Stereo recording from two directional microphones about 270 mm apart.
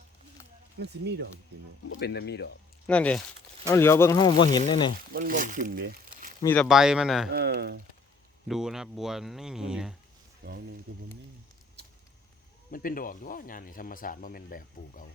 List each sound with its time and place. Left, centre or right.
0.8 s speech: right
1.9 s speech: left
2.8 s speech: centre
5.1 s speech: right
6.4 s speech: centre
7.3 s speech: right
8.4 s speech: centre
10.4 s speech: right
12.7 s speech: left